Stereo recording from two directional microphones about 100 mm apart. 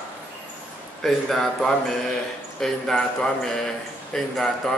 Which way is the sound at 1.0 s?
Centre (ahead or behind).